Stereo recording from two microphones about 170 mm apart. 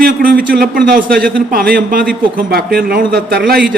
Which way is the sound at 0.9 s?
55° right (ahead or behind).